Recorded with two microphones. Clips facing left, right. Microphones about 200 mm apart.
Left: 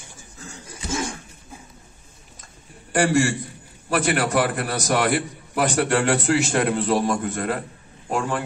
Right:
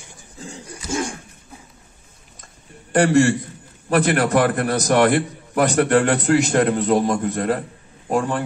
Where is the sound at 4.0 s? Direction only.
60° right (ahead or behind).